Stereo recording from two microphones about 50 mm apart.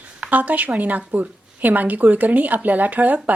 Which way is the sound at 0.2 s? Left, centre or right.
Right.